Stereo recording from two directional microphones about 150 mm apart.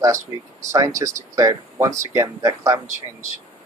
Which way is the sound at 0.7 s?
20° right (ahead or behind).